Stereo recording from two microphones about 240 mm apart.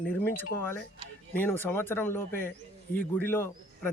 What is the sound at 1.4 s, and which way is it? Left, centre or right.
Speech, centre.